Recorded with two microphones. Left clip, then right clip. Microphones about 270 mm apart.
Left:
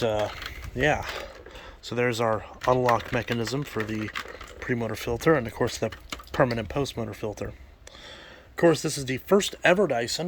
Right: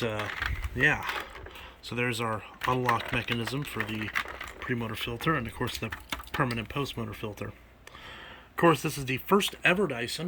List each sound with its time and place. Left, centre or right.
0.0 s speech: centre
8.5 s speech: centre